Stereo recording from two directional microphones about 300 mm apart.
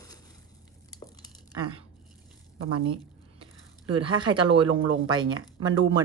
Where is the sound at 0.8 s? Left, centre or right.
Centre.